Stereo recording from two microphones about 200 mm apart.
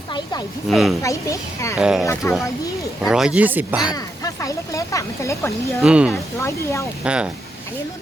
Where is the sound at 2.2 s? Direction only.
10° left (ahead or behind).